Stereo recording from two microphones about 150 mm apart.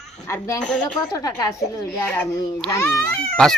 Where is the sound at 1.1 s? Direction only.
25° left (ahead or behind).